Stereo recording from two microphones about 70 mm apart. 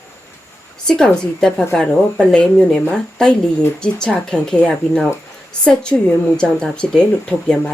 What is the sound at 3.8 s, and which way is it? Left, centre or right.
Speech, centre.